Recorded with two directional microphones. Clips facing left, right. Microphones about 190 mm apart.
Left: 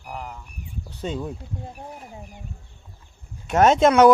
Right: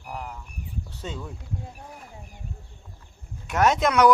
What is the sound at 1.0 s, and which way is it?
Speech, 20° left (ahead or behind).